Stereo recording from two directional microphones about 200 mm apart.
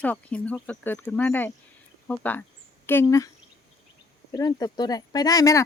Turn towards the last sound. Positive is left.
turn(degrees=15)  # may be behind; listen again after turning